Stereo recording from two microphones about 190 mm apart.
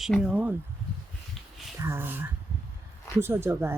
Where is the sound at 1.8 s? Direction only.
15° right (ahead or behind).